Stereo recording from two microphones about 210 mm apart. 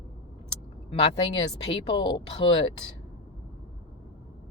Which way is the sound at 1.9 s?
20° left (ahead or behind).